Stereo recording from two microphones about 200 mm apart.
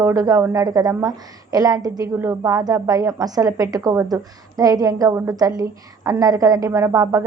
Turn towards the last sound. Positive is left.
turn(degrees=-15)  # may be behind; listen again after turning